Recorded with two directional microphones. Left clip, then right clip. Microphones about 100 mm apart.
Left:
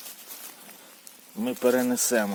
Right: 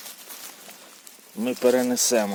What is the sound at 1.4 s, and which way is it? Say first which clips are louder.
Speech: right 3 dB; 45° right (ahead or behind).